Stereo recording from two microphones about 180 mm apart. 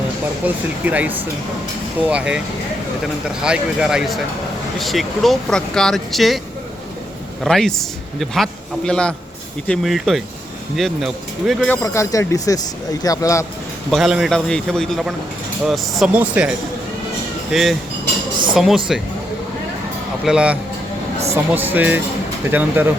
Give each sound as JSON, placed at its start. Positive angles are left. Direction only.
{"t": 0.4, "sound": "a man's voice", "side_deg": -10}
{"t": 7.4, "sound": "a man's voice", "side_deg": 0}
{"t": 11.7, "sound": "speech", "side_deg": 15}
{"t": 13.9, "sound": "a man's voice", "side_deg": 0}
{"t": 20.2, "sound": "a man's voice", "side_deg": -5}